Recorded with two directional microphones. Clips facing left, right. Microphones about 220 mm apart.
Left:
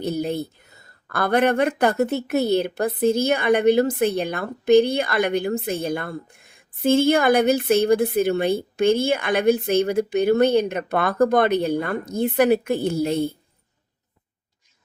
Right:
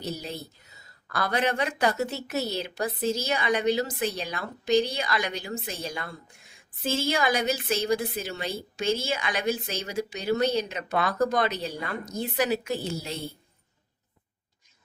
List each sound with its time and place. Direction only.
0.0 s speech: 55° left (ahead or behind)